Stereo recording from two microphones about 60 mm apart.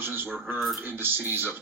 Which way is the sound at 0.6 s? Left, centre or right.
Centre.